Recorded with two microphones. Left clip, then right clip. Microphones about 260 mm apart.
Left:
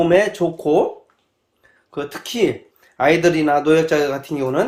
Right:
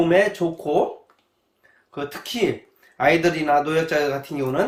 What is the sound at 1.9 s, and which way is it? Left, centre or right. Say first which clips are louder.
Speech: left 3 dB; left.